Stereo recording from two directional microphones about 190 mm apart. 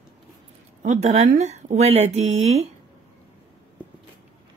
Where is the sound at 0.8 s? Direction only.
40° right (ahead or behind).